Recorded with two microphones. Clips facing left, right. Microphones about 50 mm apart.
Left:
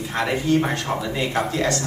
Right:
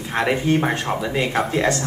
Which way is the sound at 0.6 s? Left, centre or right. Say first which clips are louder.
Right 1 dB; centre.